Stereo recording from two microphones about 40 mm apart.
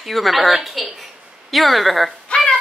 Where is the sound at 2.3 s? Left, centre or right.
Centre.